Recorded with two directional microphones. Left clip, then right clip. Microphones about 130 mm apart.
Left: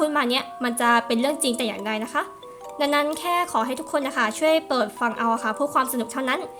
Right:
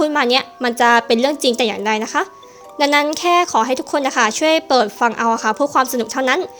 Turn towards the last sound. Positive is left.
turn(degrees=-45)  # may be behind; listen again after turning